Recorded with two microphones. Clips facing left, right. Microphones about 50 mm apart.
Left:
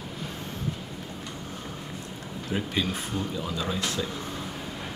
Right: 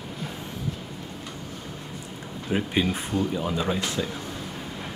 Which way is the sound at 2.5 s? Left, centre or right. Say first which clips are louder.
Right 4 dB; right.